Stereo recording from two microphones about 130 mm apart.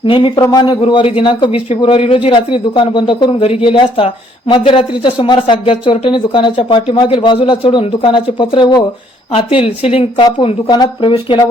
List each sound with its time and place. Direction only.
0.0 s a man's voice: 40° left (ahead or behind)
10.7 s speech: 35° left (ahead or behind)